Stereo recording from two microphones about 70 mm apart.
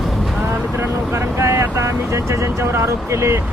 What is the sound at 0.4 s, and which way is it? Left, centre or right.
Vehicle, right.